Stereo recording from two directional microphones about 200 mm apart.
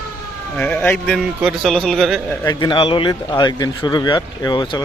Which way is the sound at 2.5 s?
25° left (ahead or behind).